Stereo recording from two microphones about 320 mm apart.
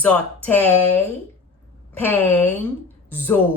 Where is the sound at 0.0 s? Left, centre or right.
Centre.